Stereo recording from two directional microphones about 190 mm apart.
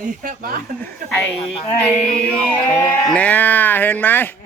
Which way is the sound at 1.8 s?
5° left (ahead or behind).